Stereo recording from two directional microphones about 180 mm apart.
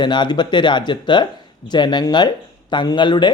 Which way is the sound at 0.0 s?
25° left (ahead or behind).